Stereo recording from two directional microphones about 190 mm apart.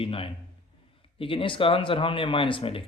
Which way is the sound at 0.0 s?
30° left (ahead or behind).